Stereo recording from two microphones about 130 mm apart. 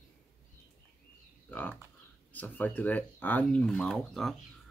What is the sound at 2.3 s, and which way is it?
Speech, 15° left (ahead or behind).